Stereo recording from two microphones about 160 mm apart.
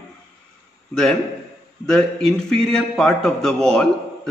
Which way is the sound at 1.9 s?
5° left (ahead or behind).